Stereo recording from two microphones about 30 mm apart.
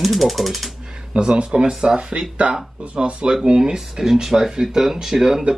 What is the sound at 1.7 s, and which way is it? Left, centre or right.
Speech, centre.